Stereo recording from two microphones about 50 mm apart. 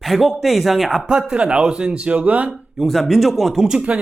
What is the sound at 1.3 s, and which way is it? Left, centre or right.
Speech, centre.